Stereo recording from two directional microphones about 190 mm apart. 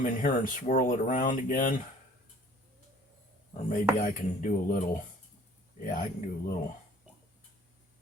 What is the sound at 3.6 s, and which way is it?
Speech, 45° left (ahead or behind).